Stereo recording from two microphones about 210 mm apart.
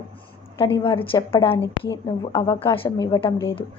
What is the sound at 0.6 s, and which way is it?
A woman's voice, 25° left (ahead or behind).